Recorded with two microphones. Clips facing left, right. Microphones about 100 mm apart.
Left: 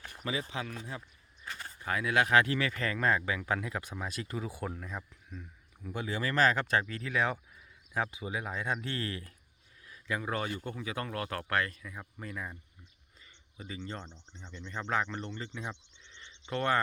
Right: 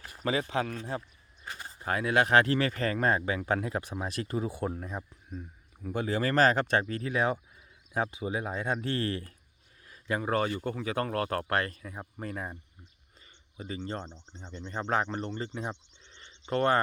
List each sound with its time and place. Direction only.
0.3 s speech: 55° right (ahead or behind); by 6.3 s 40° right (ahead or behind)
6.5 s speech: 30° right (ahead or behind)